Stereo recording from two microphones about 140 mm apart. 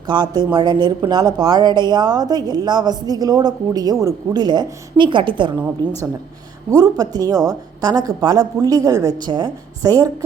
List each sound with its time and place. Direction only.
0.1 s a woman's voice: 30° right (ahead or behind)
6.7 s speech: 25° right (ahead or behind)